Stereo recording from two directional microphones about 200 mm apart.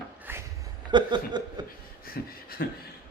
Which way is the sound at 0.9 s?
20° right (ahead or behind).